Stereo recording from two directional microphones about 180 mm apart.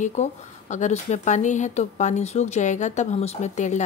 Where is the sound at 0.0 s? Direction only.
40° left (ahead or behind).